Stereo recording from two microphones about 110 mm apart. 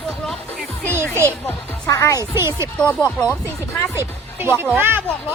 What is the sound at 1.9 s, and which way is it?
Speech, 30° left (ahead or behind).